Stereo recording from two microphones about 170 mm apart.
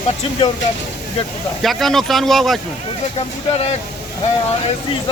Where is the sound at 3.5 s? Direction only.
35° left (ahead or behind).